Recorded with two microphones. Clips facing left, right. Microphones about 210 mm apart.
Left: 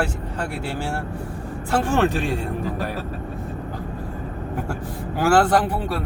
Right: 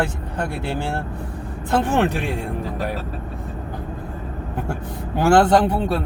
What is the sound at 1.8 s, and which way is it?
Speech, 15° right (ahead or behind).